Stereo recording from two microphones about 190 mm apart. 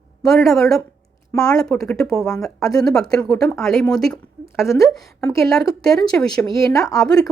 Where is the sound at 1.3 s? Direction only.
20° left (ahead or behind).